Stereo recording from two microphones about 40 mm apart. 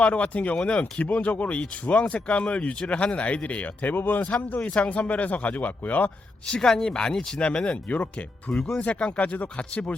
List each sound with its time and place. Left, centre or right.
0.0 s speech: left
1.1 s speech: left
3.9 s speech: left
4.2 s speech: left
6.6 s speech: centre
6.8 s speech: left
8.5 s speech: centre
8.8 s speech: left